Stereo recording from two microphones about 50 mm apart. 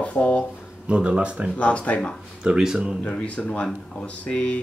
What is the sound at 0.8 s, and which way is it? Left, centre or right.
Speech, right.